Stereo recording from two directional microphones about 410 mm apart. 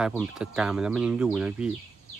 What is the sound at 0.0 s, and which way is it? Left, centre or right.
Speech, centre.